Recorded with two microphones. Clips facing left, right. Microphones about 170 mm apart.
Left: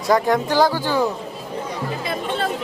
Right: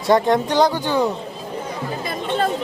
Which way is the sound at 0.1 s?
20° right (ahead or behind).